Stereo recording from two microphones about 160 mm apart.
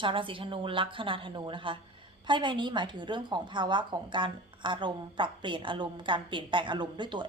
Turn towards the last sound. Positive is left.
turn(degrees=-30)  # may be behind; listen again after turning